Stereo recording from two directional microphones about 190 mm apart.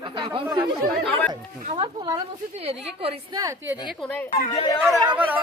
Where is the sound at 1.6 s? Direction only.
30° right (ahead or behind).